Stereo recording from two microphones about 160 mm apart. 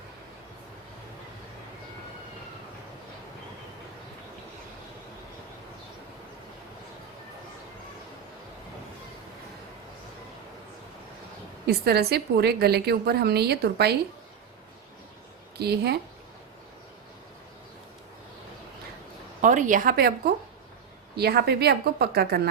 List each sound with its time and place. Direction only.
11.6 s a woman's voice: 85° right
15.5 s a woman's voice: 85° right
19.4 s a woman's voice: 50° right (ahead or behind); by 22.4 s 80° right